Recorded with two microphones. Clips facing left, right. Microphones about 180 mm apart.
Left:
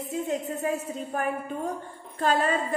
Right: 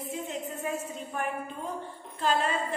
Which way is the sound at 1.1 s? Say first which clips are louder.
Left 4 dB; 40° left (ahead or behind).